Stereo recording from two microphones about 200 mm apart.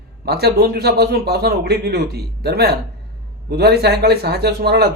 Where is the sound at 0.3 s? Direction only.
50° right (ahead or behind).